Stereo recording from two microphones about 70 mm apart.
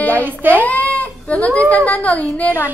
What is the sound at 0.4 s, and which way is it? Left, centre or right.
Speech, right.